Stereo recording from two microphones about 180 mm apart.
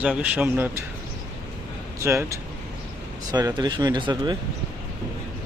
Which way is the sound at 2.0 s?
15° right (ahead or behind).